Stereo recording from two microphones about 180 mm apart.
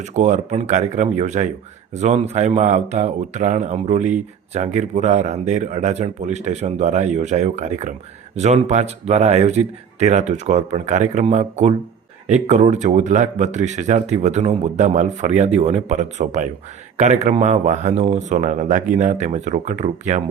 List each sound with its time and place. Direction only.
0.0 s speech: 40° right (ahead or behind)